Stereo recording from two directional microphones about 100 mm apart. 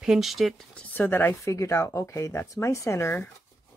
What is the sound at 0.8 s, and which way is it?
Speech, 15° left (ahead or behind).